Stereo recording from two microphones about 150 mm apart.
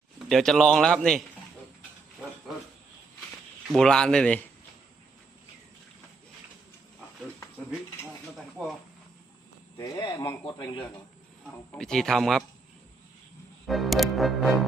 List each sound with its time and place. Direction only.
0.3 s music: centre (ahead or behind)
3.7 s music: 5° left (ahead or behind)
8.4 s music: centre (ahead or behind)
9.7 s speech: 20° left (ahead or behind)
10.0 s speech: 30° left (ahead or behind)
11.8 s music: 5° left (ahead or behind)
13.7 s music: centre (ahead or behind)